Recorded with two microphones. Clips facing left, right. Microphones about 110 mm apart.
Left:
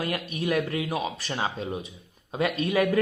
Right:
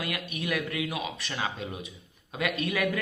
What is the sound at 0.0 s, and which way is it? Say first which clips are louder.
Speech: left 5 dB; 30° left (ahead or behind).